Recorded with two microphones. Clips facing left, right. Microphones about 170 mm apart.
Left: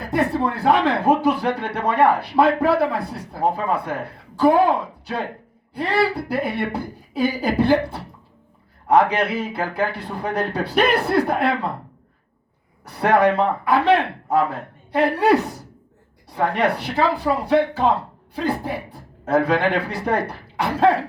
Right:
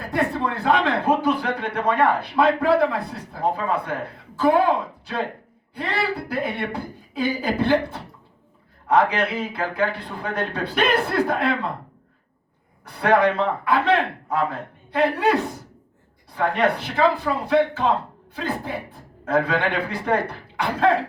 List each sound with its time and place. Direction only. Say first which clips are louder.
0.3 s speech: left 3 dB; 35° left (ahead or behind)
9.1 s speech: left 2 dB; 30° left (ahead or behind)
12.8 s speech: left 2 dB; 30° left (ahead or behind)